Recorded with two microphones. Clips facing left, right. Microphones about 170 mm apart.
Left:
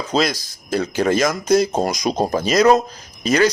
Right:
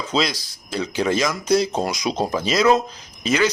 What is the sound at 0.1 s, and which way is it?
Speech, 45° left (ahead or behind).